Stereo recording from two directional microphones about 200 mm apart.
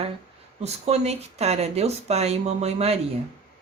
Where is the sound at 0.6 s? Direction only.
30° right (ahead or behind).